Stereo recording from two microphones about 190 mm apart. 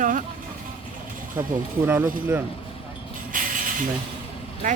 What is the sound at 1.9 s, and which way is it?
Speech, 10° right (ahead or behind).